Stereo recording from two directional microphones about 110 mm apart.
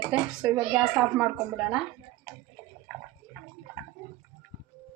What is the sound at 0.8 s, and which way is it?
A woman's voice, 5° right (ahead or behind).